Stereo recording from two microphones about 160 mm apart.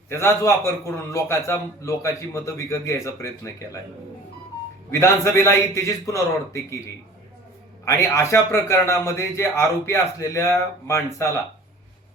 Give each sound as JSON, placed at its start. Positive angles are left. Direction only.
{"t": 0.1, "sound": "a man's voice", "side_deg": 15}
{"t": 4.9, "sound": "a man's voice", "side_deg": 15}
{"t": 7.9, "sound": "a man's voice", "side_deg": 20}